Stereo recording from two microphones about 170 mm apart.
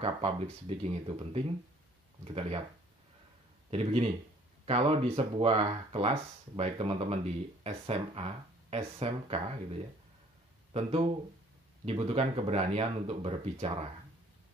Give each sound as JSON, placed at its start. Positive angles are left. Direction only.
{"t": 0.0, "sound": "speech", "side_deg": -35}
{"t": 3.7, "sound": "speech", "side_deg": -35}
{"t": 10.7, "sound": "speech", "side_deg": -35}